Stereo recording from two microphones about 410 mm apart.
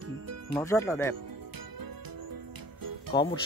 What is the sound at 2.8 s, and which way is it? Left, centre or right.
Music, right.